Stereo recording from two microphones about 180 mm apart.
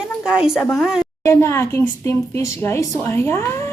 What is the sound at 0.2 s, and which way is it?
Speech, 5° right (ahead or behind).